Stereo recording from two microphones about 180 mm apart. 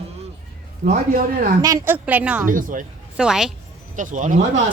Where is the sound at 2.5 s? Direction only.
50° right (ahead or behind).